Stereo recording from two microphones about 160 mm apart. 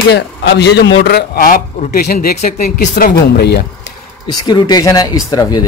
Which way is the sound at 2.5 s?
50° left (ahead or behind).